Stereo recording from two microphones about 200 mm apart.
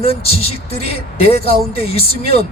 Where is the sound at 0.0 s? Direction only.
30° left (ahead or behind).